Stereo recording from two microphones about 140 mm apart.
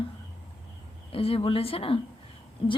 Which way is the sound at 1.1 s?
40° left (ahead or behind).